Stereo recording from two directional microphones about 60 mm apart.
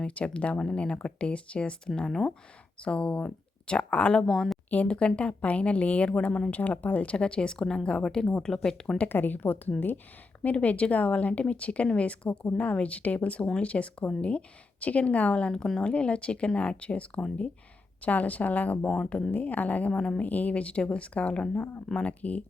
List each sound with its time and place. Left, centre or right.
0.0 s a woman's voice: left
2.0 s speech: centre
2.8 s speech: centre
4.3 s a woman's voice: centre
4.7 s a woman's voice: left
9.0 s a woman's voice: left